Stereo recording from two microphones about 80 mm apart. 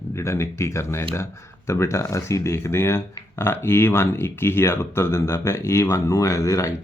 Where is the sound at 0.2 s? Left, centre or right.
Left.